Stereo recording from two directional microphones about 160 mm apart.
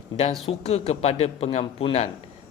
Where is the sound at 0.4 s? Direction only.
40° left (ahead or behind).